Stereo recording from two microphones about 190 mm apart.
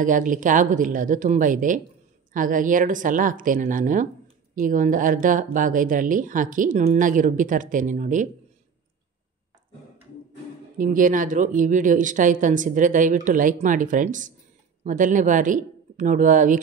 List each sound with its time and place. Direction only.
0.0 s speech: 45° right (ahead or behind)
10.8 s speech: 45° right (ahead or behind)